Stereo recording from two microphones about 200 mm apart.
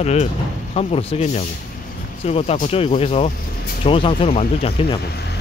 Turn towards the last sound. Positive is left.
turn(degrees=30)  # may be behind; listen again after turning